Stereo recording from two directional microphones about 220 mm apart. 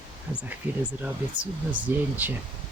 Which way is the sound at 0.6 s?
5° right (ahead or behind).